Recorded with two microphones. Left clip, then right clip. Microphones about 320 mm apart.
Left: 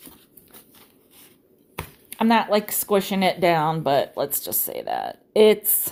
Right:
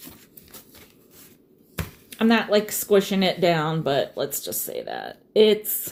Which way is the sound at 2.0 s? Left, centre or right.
Left.